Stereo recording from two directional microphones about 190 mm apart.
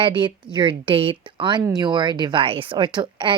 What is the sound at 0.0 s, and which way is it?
Speech, 25° right (ahead or behind).